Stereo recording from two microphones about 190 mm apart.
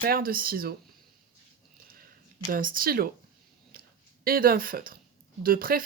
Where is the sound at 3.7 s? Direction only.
50° right (ahead or behind).